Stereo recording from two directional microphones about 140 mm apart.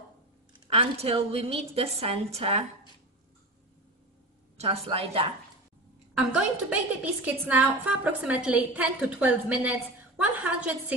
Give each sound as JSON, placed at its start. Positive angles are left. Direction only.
{"t": 0.7, "sound": "a woman's voice", "side_deg": -45}
{"t": 4.6, "sound": "a woman's voice", "side_deg": -45}
{"t": 6.1, "sound": "a woman's voice", "side_deg": -10}